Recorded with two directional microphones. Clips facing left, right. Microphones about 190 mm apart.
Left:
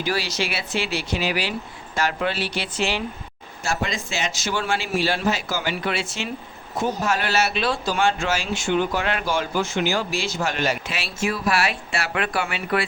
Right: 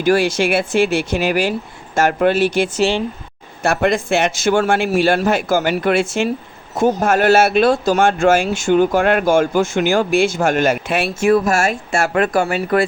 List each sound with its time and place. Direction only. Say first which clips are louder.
0.0 s speech: right 11 dB; 50° right (ahead or behind)
3.6 s speech: right 10 dB; 60° right (ahead or behind); by 12.8 s 45° right (ahead or behind)